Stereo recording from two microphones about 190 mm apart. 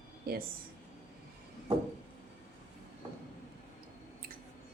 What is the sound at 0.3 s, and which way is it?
Speech, 50° right (ahead or behind).